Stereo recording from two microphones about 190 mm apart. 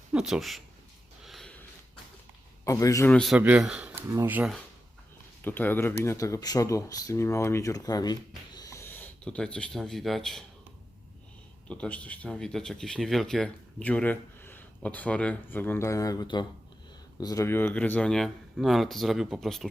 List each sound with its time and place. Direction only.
0.1 s speech: 5° right (ahead or behind)
1.2 s snort: centre (ahead or behind)
2.6 s speech: 15° left (ahead or behind)
3.1 s speech: centre (ahead or behind)
5.4 s speech: 10° left (ahead or behind)
11.7 s speech: 5° left (ahead or behind)